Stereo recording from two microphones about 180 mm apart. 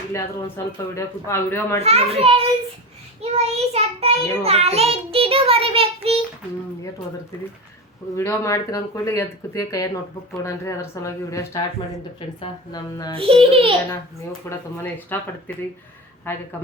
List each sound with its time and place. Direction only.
0.1 s speech: 15° left (ahead or behind)
1.8 s child singing: 35° right (ahead or behind)
8.1 s speech: 15° left (ahead or behind)
13.1 s child singing: 30° right (ahead or behind)
14.5 s speech: 15° left (ahead or behind)